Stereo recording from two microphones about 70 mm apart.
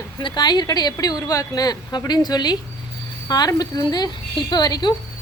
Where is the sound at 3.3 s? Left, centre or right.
Left.